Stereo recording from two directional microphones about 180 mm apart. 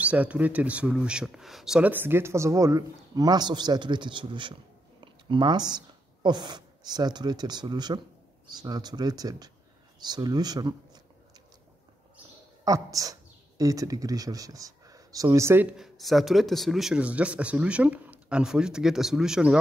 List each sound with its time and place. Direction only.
0.0 s speech: 10° right (ahead or behind)
9.9 s a sound: 25° right (ahead or behind)
12.6 s speech: 20° right (ahead or behind); by 19.6 s 5° right (ahead or behind)